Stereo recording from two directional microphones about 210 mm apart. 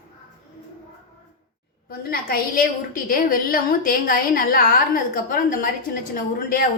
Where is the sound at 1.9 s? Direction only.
45° left (ahead or behind).